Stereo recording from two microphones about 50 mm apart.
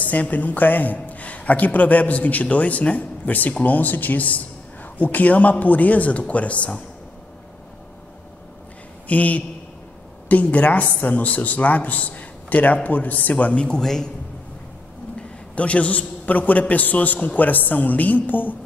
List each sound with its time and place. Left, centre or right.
0.0 s a man's voice: left
9.0 s a man's voice: left
13.7 s a man's voice: centre
15.5 s a man's voice: left